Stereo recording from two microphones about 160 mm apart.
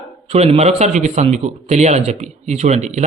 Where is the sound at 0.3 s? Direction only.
40° right (ahead or behind).